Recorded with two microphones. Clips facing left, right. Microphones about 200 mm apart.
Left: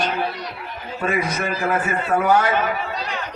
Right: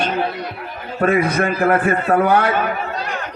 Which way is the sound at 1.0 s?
55° right (ahead or behind).